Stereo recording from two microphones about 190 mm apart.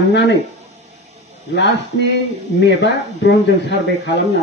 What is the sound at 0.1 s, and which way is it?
Speech, 65° left (ahead or behind).